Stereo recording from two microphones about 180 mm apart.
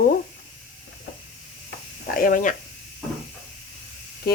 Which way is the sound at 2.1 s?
50° left (ahead or behind).